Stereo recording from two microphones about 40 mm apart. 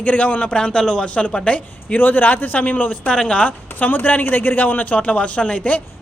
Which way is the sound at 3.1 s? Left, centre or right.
Left.